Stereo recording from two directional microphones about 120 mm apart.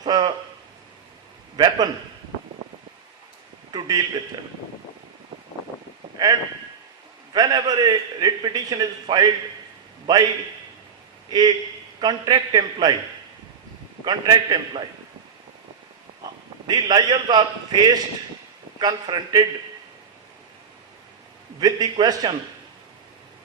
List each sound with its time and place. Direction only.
0.0 s a sound: 35° right (ahead or behind)
1.5 s a man's voice: 35° right (ahead or behind)
3.7 s a sound: 35° right (ahead or behind)
6.2 s a man's voice: 30° right (ahead or behind)
7.3 s a man's voice: 35° right (ahead or behind)
11.3 s a man's voice: 35° right (ahead or behind)
14.0 s a man's voice: 35° right (ahead or behind)
16.6 s a man's voice: 35° right (ahead or behind)
21.6 s a man's voice: 35° right (ahead or behind)